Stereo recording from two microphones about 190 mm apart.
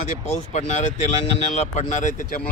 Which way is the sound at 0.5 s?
35° left (ahead or behind).